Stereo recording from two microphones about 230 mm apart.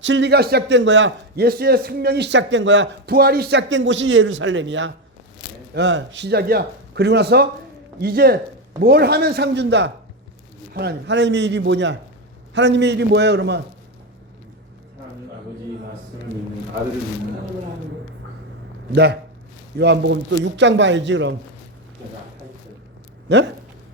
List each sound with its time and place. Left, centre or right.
0.0 s a man's voice: right
19.8 s a man's voice: right
23.3 s a man's voice: right